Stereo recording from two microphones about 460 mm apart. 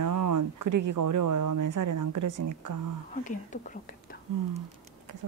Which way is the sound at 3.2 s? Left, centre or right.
Centre.